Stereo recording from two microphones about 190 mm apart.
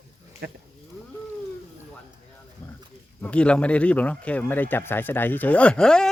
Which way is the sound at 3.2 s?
5° left (ahead or behind).